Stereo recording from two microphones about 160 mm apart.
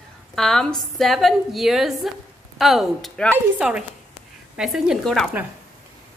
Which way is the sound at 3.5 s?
5° right (ahead or behind).